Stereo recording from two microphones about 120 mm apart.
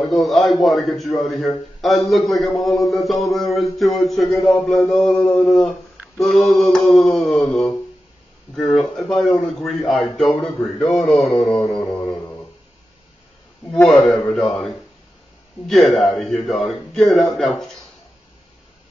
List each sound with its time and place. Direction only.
0.0 s a man's voice: centre (ahead or behind)
11.8 s a sound: 20° left (ahead or behind)
13.8 s a man's voice: centre (ahead or behind)
15.6 s a man's voice: centre (ahead or behind)